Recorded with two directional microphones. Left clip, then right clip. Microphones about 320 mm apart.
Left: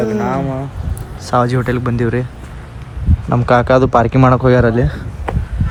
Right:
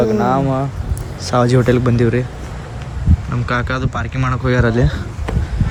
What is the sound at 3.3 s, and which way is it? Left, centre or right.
Speech, centre.